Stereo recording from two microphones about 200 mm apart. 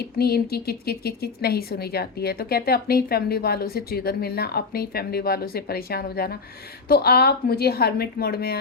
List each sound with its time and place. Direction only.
0.0 s speech: 50° left (ahead or behind)